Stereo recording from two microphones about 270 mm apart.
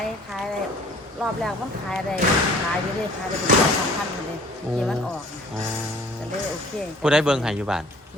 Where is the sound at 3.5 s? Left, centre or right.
Right.